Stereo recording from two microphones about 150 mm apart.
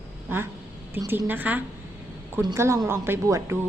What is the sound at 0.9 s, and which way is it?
Speech, 15° right (ahead or behind).